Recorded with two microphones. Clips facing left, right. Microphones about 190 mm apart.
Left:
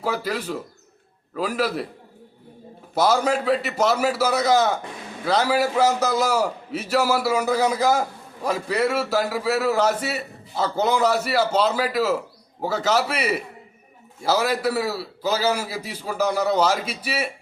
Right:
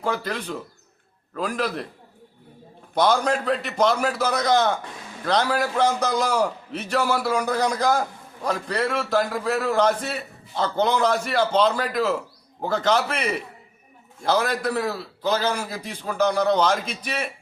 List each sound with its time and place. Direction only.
0.0 s a man's voice: 5° left (ahead or behind)
2.9 s a man's voice: 5° left (ahead or behind)